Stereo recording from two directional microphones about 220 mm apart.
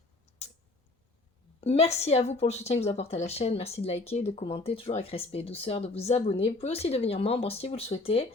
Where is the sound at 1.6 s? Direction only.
30° left (ahead or behind).